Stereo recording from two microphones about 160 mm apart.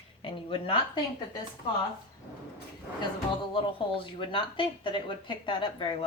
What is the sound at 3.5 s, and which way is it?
Speech, 30° left (ahead or behind).